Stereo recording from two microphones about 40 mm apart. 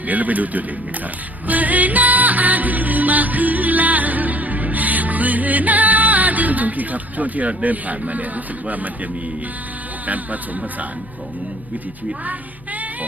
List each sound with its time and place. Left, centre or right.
0.1 s speech: right
1.5 s music: right